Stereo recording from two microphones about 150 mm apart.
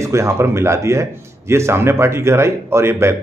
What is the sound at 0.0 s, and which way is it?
Speech, 20° right (ahead or behind).